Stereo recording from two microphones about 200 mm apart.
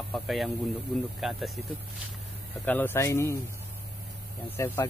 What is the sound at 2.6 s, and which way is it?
Speech, 10° left (ahead or behind).